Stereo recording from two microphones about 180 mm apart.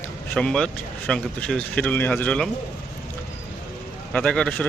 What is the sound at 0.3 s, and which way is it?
A man's voice, 5° left (ahead or behind).